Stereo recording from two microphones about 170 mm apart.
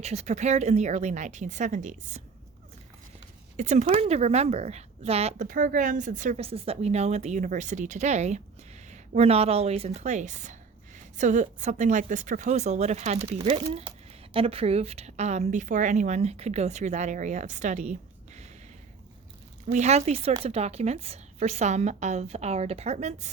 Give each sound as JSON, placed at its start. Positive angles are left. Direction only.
{"t": 0.0, "sound": "speech", "side_deg": -40}
{"t": 3.6, "sound": "speech", "side_deg": -45}
{"t": 3.8, "sound": "speech", "side_deg": -30}
{"t": 5.5, "sound": "speech", "side_deg": -50}
{"t": 6.4, "sound": "speech", "side_deg": -35}
{"t": 19.6, "sound": "speech", "side_deg": -40}